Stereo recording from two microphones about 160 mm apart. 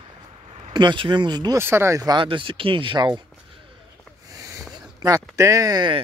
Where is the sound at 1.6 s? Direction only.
15° right (ahead or behind).